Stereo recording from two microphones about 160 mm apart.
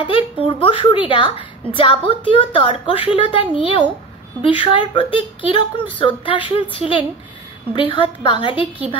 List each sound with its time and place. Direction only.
0.0 s a woman's voice: 35° left (ahead or behind)